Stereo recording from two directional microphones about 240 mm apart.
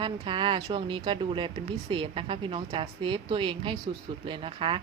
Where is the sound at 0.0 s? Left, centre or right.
Centre.